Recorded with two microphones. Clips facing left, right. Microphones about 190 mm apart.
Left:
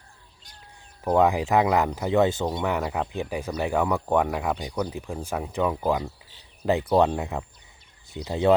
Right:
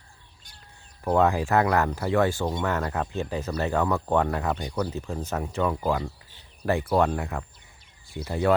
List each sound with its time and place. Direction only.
1.0 s speech: 15° left (ahead or behind)
6.9 s speech: 20° left (ahead or behind)